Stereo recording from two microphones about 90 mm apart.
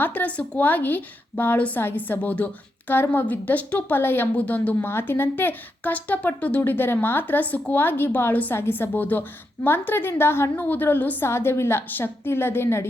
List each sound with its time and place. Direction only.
0.0 s a woman's voice: 20° left (ahead or behind)